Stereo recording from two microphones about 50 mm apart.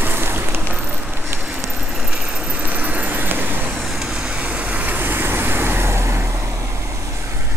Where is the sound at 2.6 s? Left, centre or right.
Right.